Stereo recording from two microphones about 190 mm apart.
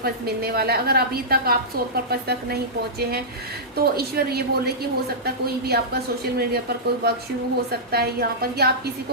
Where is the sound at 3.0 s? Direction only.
55° right (ahead or behind).